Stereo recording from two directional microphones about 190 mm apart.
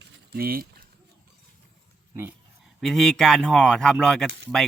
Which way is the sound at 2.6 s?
Centre (ahead or behind).